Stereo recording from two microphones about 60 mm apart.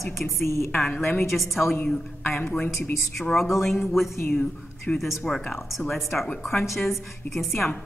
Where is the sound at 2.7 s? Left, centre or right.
Left.